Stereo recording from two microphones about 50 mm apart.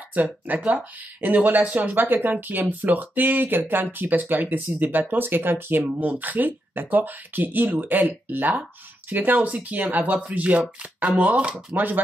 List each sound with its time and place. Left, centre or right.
0.1 s speech: right
11.7 s speech: right